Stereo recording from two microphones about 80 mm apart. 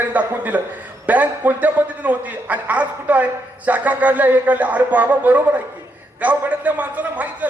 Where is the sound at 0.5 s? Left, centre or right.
Centre.